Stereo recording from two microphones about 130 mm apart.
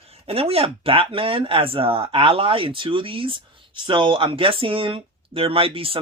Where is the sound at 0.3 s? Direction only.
50° right (ahead or behind).